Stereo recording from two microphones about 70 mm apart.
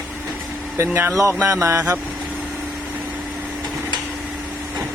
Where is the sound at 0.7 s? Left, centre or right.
Right.